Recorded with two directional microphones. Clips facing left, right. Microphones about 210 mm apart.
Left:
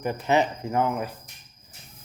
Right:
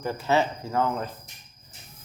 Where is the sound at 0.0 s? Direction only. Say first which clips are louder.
Left 1 dB; 20° left (ahead or behind).